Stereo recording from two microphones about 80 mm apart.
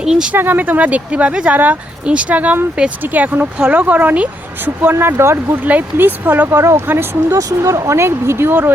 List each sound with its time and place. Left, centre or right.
0.0 s speech: centre
0.3 s speech: right
5.6 s speech: right
6.6 s speech: right
7.3 s speech: right